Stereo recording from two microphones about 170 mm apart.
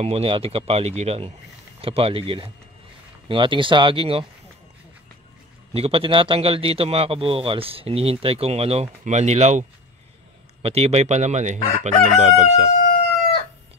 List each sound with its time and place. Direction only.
0.0 s speech: 35° right (ahead or behind)
5.7 s speech: 35° right (ahead or behind)
10.6 s chicken: 35° right (ahead or behind)